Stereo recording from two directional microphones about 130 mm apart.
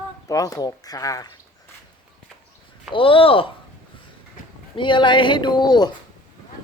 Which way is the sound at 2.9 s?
45° left (ahead or behind).